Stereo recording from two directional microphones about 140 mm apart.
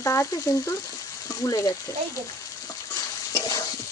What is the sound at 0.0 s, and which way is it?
Speech, 25° left (ahead or behind).